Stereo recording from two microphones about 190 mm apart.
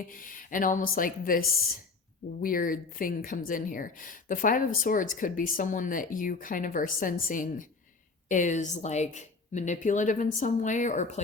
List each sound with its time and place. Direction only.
0.1 s speech: 45° left (ahead or behind)